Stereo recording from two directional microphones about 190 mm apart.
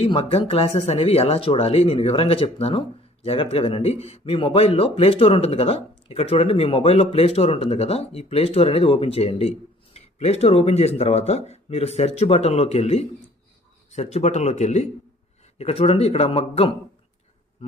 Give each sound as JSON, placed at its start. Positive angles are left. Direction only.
{"t": 0.0, "sound": "speech", "side_deg": 30}